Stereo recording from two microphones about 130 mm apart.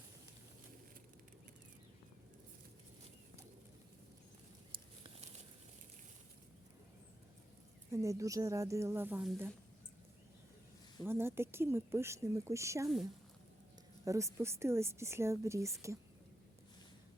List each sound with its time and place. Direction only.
4.7 s a sound: 40° right (ahead or behind)
5.2 s crumpling: 55° right (ahead or behind)
7.9 s speech: 25° right (ahead or behind)
11.0 s speech: 20° right (ahead or behind)
14.0 s speech: 25° right (ahead or behind)